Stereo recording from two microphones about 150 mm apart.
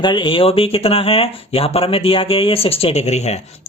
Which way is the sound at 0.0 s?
30° left (ahead or behind).